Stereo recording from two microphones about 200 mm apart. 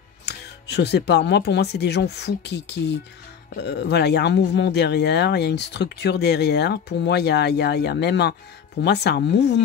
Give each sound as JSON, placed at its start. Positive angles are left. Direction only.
{"t": 0.2, "sound": "speech", "side_deg": 55}